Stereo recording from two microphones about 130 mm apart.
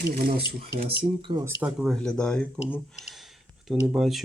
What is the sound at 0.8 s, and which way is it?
Speech, 40° right (ahead or behind).